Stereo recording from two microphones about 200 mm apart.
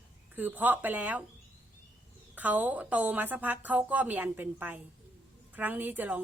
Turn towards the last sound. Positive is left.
turn(degrees=-10)  # may be behind; listen again after turning